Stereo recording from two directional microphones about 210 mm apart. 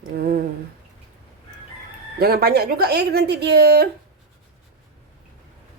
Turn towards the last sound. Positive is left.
turn(degrees=-50)  # may be behind; listen again after turning